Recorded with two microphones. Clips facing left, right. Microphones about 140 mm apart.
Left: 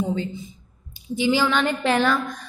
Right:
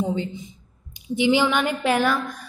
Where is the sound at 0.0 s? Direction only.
20° right (ahead or behind).